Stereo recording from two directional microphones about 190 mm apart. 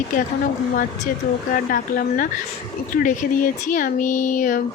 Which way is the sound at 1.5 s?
50° left (ahead or behind).